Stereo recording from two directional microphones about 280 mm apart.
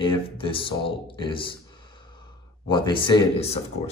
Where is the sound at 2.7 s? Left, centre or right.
Centre.